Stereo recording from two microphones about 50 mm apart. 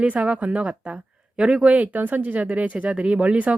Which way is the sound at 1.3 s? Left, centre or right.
Centre.